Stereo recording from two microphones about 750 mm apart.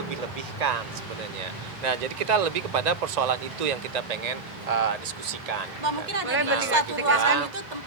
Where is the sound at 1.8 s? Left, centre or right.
Right.